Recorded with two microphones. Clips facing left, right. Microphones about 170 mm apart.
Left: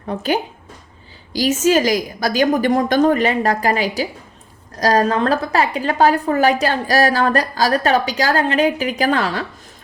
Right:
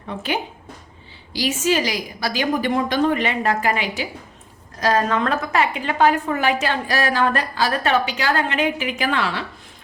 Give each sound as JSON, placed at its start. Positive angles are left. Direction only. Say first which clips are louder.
{"t": 0.1, "sound": "a woman's voice", "louder": "left 5 dB", "side_deg": 40}